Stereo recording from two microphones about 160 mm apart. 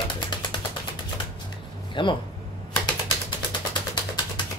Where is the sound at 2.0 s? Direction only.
30° left (ahead or behind).